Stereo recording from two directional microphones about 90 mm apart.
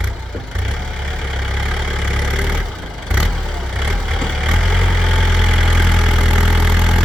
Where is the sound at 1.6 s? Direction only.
5° right (ahead or behind).